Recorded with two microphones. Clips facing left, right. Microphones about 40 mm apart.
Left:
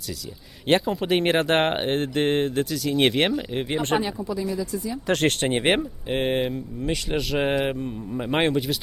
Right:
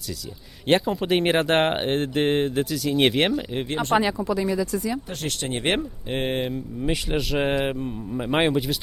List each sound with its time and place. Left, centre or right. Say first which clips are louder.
0.7 s speech: even; centre
3.9 s speech: right 7 dB; right
5.2 s speech: left 7 dB; left
5.6 s speech: left 2 dB; centre
6.8 s speech: right 1 dB; centre
7.2 s speech: left 1 dB; centre